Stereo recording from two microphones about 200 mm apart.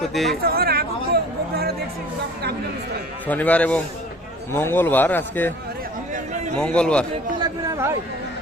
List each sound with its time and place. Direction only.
0.1 s a man's voice: centre (ahead or behind)
0.4 s chatter: 50° right (ahead or behind)
3.2 s a man's voice: 10° left (ahead or behind)
6.6 s a man's voice: 5° left (ahead or behind)
7.3 s a sound: 20° right (ahead or behind)